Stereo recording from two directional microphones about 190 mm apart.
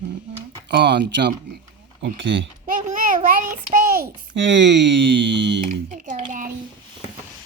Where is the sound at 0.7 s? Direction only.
60° right (ahead or behind).